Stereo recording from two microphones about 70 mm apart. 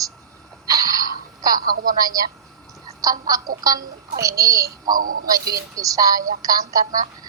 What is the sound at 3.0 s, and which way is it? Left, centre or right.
A child's voice, right.